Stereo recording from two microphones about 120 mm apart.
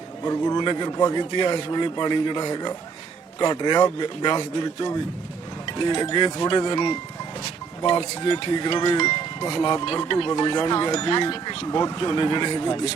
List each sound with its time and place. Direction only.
0.3 s a man's voice: 30° left (ahead or behind)
6.0 s speech: 35° left (ahead or behind)
9.0 s speech: 30° left (ahead or behind)